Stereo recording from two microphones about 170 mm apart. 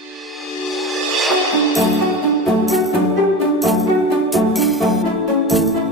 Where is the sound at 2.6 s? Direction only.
Centre (ahead or behind).